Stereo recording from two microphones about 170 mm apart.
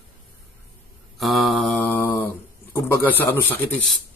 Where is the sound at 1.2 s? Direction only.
Centre (ahead or behind).